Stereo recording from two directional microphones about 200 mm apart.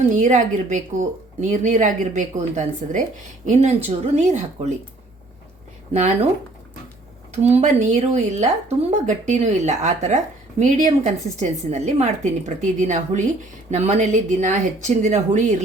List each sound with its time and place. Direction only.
0.0 s a woman's voice: 40° right (ahead or behind)
5.9 s a woman's voice: 35° right (ahead or behind)
7.4 s a woman's voice: 35° right (ahead or behind)